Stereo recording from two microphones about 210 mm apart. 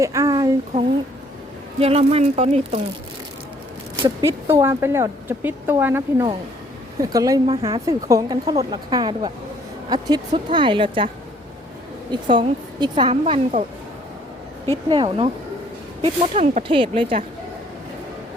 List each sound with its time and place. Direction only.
0.0 s speech: 15° right (ahead or behind)
1.8 s a woman's voice: 30° right (ahead or behind)
4.0 s a woman's voice: 15° right (ahead or behind)
7.9 s a woman's voice: 15° right (ahead or behind)
12.3 s a woman's voice: 20° right (ahead or behind)
14.8 s a woman's voice: 25° right (ahead or behind)